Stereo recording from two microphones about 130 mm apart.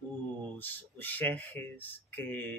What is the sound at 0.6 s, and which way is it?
Speech, 15° left (ahead or behind).